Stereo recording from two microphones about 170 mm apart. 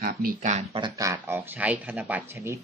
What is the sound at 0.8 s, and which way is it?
Speech, 20° right (ahead or behind).